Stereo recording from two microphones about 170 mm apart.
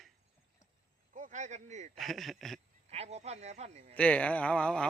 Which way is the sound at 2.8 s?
40° right (ahead or behind).